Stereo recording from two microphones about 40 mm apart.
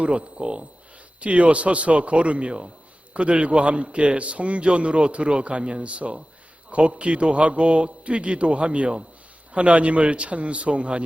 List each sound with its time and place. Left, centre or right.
0.0 s a man's voice: right